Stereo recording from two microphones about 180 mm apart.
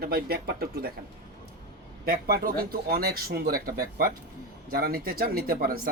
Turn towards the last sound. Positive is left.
turn(degrees=-55)  # may be behind; listen again after turning